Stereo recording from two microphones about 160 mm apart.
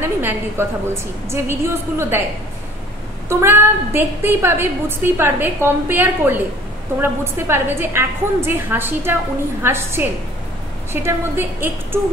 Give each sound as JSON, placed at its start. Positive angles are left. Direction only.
{"t": 0.0, "sound": "a woman's voice", "side_deg": -15}
{"t": 3.3, "sound": "a woman's voice", "side_deg": -15}